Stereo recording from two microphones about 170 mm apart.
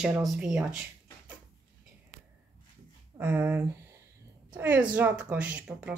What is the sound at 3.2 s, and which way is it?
Speech, 10° right (ahead or behind).